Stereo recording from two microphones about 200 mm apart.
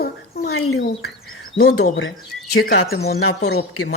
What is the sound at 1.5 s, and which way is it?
Speech, 55° left (ahead or behind).